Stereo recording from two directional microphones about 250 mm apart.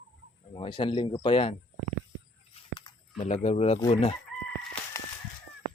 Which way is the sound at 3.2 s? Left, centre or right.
Left.